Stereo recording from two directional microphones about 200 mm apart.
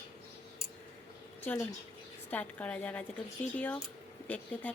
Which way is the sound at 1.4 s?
10° left (ahead or behind).